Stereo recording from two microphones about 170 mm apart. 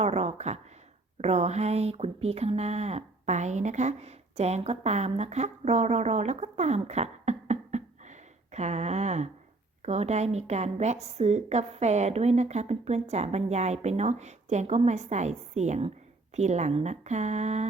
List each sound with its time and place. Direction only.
0.0 s a woman's voice: 40° right (ahead or behind)